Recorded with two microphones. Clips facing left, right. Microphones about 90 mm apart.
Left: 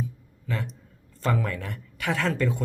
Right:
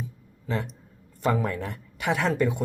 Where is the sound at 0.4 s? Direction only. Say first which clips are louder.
Right 2 dB; 20° right (ahead or behind).